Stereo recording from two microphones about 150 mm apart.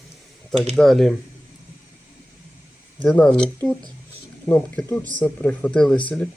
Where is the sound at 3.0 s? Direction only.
10° left (ahead or behind).